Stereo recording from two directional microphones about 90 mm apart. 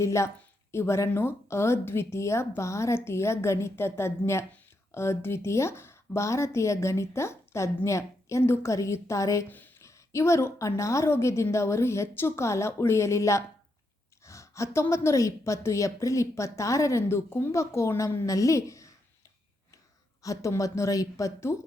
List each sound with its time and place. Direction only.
0.0 s speech: 35° left (ahead or behind)
9.5 s speech: 20° left (ahead or behind)
9.7 s speech: 35° left (ahead or behind)
20.2 s speech: 35° left (ahead or behind)